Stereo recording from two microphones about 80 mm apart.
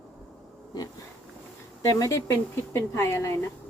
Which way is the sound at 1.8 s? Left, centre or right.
Left.